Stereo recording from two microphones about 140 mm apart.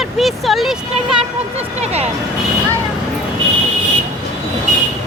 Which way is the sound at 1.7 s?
50° right (ahead or behind).